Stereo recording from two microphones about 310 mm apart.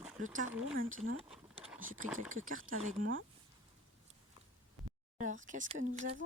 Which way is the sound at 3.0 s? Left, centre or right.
Right.